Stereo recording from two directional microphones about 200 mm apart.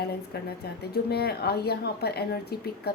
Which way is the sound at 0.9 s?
55° left (ahead or behind).